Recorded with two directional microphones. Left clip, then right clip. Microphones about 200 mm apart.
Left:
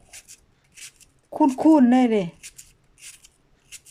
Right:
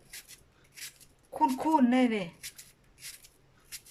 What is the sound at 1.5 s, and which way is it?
Speech, 35° left (ahead or behind).